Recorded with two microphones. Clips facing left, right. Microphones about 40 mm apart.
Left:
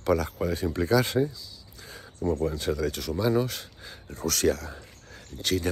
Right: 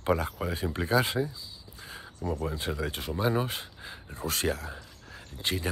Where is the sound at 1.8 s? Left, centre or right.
Right.